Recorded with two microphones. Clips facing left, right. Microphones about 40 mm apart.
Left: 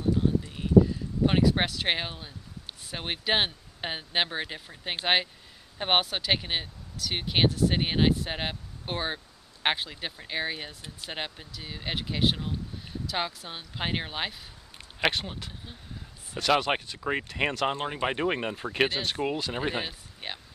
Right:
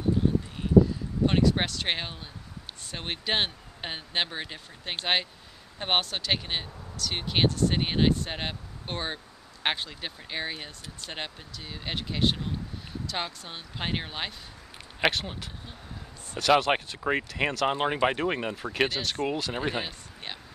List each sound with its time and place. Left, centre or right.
1.2 s speech: centre
17.3 s speech: centre
17.7 s speech: right
18.1 s speech: centre